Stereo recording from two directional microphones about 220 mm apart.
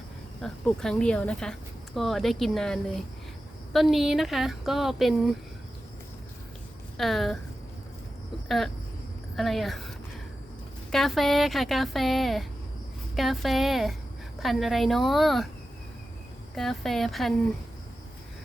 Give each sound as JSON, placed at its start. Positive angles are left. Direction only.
{"t": 0.4, "sound": "speech", "side_deg": 5}
{"t": 6.9, "sound": "speech", "side_deg": 0}
{"t": 8.4, "sound": "speech", "side_deg": 0}
{"t": 10.9, "sound": "speech", "side_deg": 0}
{"t": 16.6, "sound": "speech", "side_deg": 0}